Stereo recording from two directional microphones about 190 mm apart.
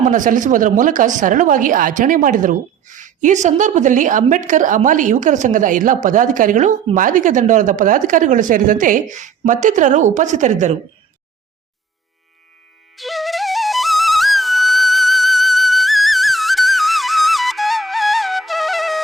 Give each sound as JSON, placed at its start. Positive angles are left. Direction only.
{"t": 0.0, "sound": "speech", "side_deg": -45}
{"t": 13.0, "sound": "flute", "side_deg": 0}